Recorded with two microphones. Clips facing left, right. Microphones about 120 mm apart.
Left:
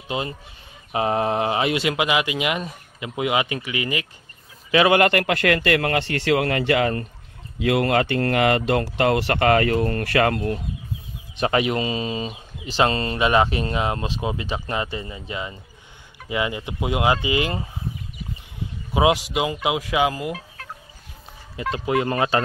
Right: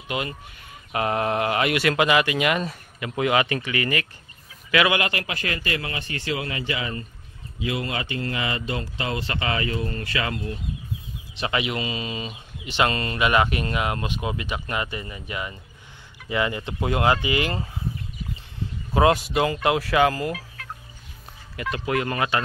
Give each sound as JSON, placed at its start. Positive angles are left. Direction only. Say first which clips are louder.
{"t": 0.1, "sound": "speech", "louder": "left 2 dB", "side_deg": 25}
{"t": 1.9, "sound": "speech", "louder": "right 2 dB", "side_deg": 10}
{"t": 4.6, "sound": "speech", "louder": "left 4 dB", "side_deg": 30}
{"t": 4.9, "sound": "speech", "louder": "left 8 dB", "side_deg": 55}
{"t": 11.3, "sound": "speech", "louder": "left 5 dB", "side_deg": 40}
{"t": 18.9, "sound": "speech", "louder": "even", "side_deg": 10}
{"t": 20.6, "sound": "fowl", "louder": "even", "side_deg": 35}
{"t": 21.5, "sound": "speech", "louder": "left 3 dB", "side_deg": 20}